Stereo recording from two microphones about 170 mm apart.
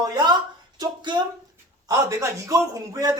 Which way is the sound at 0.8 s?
25° right (ahead or behind).